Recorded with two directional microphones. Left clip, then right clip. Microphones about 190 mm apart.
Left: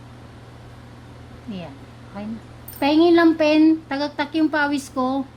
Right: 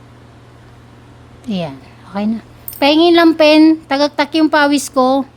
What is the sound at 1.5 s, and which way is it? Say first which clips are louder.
Speech: right 13 dB; 90° right.